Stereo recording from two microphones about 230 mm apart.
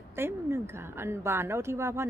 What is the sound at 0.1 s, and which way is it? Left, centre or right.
A woman's voice, centre.